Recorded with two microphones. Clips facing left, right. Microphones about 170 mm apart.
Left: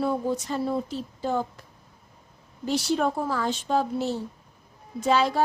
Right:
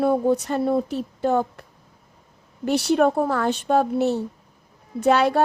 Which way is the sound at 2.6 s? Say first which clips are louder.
Right 6 dB; 65° right (ahead or behind).